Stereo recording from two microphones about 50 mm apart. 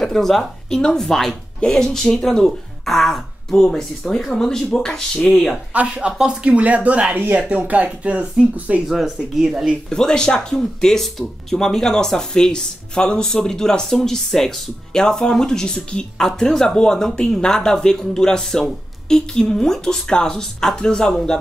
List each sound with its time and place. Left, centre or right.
0.0 s speech: centre
5.7 s speech: right
8.8 s speech: centre
9.8 s speech: centre